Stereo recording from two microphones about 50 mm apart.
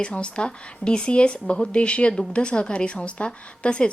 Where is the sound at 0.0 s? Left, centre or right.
Left.